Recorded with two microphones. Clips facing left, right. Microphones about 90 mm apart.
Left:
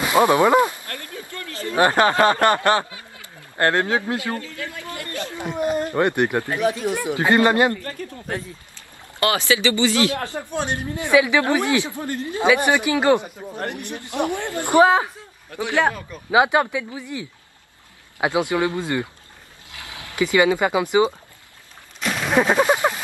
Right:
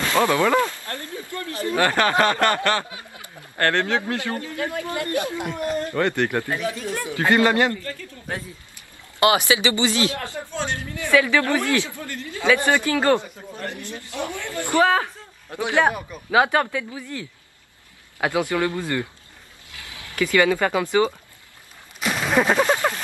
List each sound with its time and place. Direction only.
0.0 s a sound: 15° left (ahead or behind)
0.8 s a sound: 25° right (ahead or behind)
1.8 s a man's voice: 20° left (ahead or behind)
2.9 s snicker: 25° right (ahead or behind)
3.5 s a man's voice: 20° left (ahead or behind)
4.4 s speech: 30° right (ahead or behind)
5.5 s a man's voice: 20° left (ahead or behind)
7.8 s speech: 60° left (ahead or behind)
9.2 s speech: 20° right (ahead or behind)
10.5 s a man's voice: 20° left (ahead or behind)
15.5 s a man's voice: 20° right (ahead or behind)
16.3 s a man's voice: 15° left (ahead or behind)
20.2 s speech: 20° left (ahead or behind)
22.0 s a sound: centre (ahead or behind)